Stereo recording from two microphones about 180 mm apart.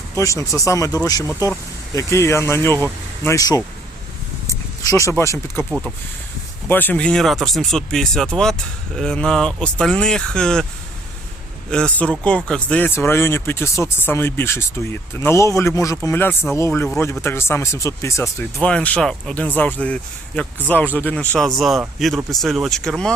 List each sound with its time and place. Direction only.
0.2 s speech: 15° left (ahead or behind)
4.9 s speech: 15° left (ahead or behind)
6.7 s speech: 10° left (ahead or behind)
11.7 s speech: 5° left (ahead or behind)